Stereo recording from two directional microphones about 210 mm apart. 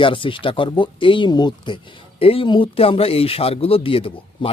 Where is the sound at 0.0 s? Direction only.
25° left (ahead or behind).